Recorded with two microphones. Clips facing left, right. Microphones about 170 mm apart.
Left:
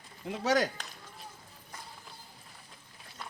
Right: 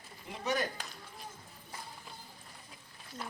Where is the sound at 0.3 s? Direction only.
90° left.